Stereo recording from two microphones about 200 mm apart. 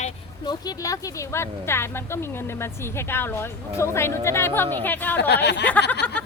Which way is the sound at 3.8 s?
15° left (ahead or behind).